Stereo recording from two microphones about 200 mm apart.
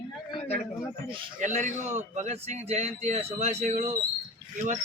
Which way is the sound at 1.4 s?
40° right (ahead or behind).